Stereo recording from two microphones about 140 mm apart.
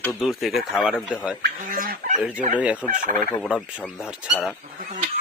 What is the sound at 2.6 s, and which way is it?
Fowl, 10° right (ahead or behind).